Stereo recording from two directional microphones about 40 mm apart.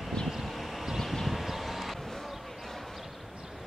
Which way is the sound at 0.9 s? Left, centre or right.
Centre.